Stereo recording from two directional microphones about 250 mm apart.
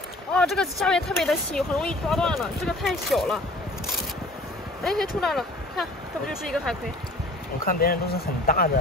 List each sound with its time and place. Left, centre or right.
0.3 s speech: centre
4.8 s speech: centre
7.6 s speech: left